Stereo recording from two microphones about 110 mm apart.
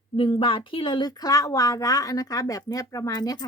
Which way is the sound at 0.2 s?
55° left (ahead or behind).